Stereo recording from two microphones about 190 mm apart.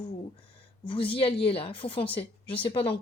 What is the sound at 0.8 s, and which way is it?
Speech, 25° left (ahead or behind).